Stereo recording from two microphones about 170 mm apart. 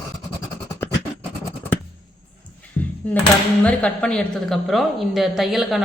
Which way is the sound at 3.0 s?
5° left (ahead or behind).